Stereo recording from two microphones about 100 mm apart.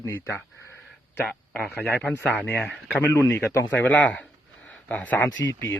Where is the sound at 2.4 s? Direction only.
20° left (ahead or behind).